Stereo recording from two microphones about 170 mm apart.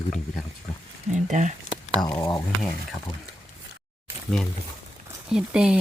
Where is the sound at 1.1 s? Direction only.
45° right (ahead or behind).